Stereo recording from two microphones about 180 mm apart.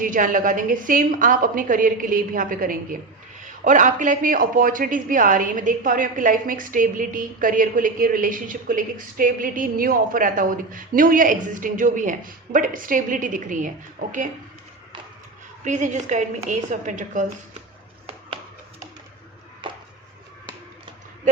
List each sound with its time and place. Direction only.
0.0 s a man's voice: 50° right (ahead or behind)
15.6 s a man's voice: 40° right (ahead or behind)
19.6 s chopping: 25° right (ahead or behind)